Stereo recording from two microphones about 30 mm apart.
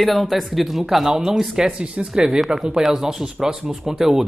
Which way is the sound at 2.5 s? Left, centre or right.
Right.